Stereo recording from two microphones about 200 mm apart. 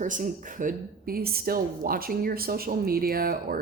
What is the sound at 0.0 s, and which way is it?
Speech, 40° right (ahead or behind).